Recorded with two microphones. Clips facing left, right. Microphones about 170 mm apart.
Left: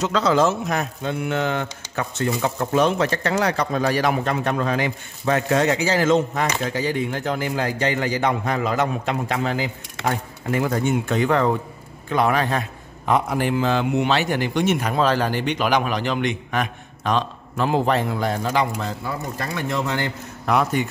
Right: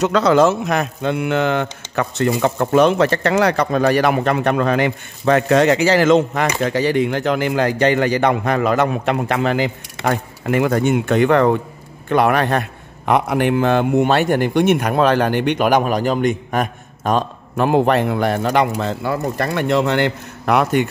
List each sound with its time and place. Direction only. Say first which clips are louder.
0.0 s a man's voice: right 5 dB; 65° right (ahead or behind)